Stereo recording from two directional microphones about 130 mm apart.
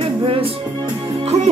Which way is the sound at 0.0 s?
45° right (ahead or behind).